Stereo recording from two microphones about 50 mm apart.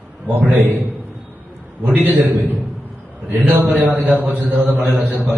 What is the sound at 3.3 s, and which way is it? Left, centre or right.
A man's voice, right.